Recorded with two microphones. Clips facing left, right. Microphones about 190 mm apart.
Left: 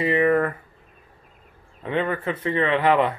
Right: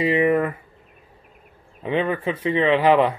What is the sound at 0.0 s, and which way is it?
Speech, 15° right (ahead or behind).